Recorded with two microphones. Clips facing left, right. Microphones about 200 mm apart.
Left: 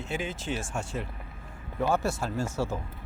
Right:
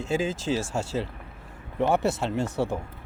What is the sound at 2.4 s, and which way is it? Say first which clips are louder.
Speech: right 3 dB; 65° right (ahead or behind).